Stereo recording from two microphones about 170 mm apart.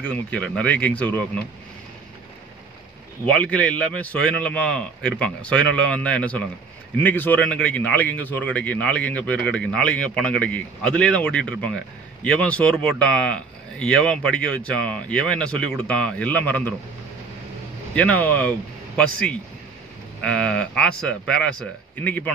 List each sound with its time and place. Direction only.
0.0 s speech: 10° left (ahead or behind)
3.3 s speech: 5° left (ahead or behind)
17.9 s speech: 10° left (ahead or behind)